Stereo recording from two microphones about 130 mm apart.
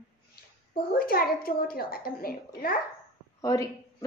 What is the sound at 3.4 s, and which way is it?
Speech, 25° left (ahead or behind).